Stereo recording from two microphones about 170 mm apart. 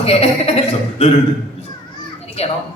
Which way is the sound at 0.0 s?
35° left (ahead or behind).